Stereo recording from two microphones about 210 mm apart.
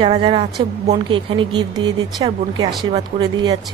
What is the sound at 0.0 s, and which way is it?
A woman's voice, 25° right (ahead or behind).